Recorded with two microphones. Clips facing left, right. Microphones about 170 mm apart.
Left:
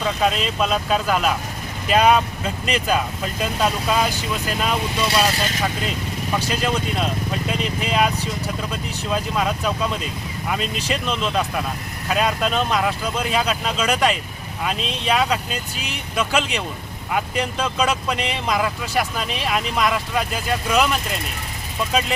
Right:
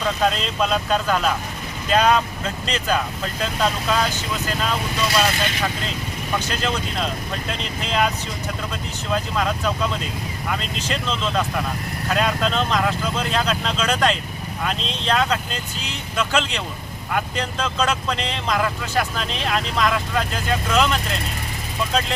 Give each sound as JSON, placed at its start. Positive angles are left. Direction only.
{"t": 0.2, "sound": "speech", "side_deg": 5}
{"t": 6.5, "sound": "speech", "side_deg": 10}